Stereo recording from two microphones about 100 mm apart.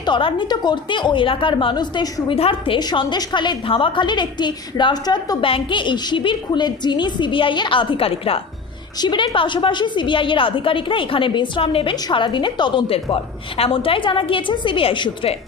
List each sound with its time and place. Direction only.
0.0 s a woman's voice: 55° left (ahead or behind)
2.3 s a woman's voice: 65° left (ahead or behind)
2.8 s a woman's voice: 50° left (ahead or behind)
5.4 s a woman's voice: 60° left (ahead or behind)
9.0 s a woman's voice: 50° left (ahead or behind); by 11.9 s 70° left (ahead or behind)
12.0 s a woman's voice: 55° left (ahead or behind)